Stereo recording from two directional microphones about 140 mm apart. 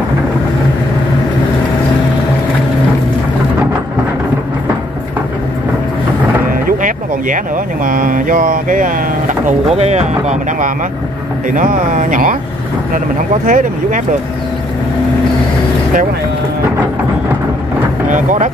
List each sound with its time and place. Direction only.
7.8 s mantra: 80° right
9.7 s speech: 50° right (ahead or behind)
11.5 s mantra: 70° right (ahead or behind)
13.5 s mantra: 75° right (ahead or behind)
18.1 s speech: 65° right (ahead or behind)